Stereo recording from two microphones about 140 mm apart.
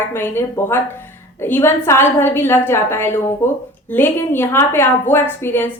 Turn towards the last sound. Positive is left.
turn(degrees=15)  # may be behind; listen again after turning